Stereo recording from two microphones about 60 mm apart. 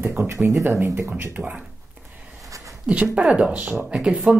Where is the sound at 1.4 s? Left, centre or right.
Right.